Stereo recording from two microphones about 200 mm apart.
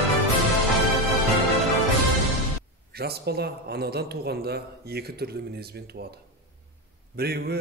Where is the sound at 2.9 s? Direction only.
50° right (ahead or behind).